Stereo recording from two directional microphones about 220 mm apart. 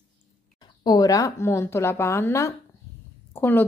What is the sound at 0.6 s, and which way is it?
A woman's voice, 15° left (ahead or behind).